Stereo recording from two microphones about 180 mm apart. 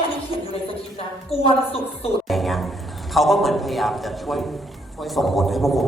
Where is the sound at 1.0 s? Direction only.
30° left (ahead or behind).